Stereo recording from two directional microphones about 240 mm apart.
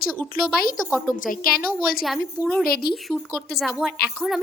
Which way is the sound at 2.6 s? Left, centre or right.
Left.